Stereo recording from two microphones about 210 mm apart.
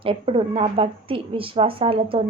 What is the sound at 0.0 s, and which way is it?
A woman's voice, 25° right (ahead or behind).